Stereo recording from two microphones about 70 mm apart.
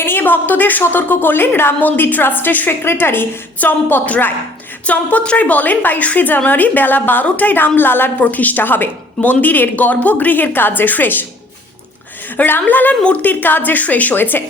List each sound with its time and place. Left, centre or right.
0.0 s a woman's voice: left
12.4 s a woman's voice: left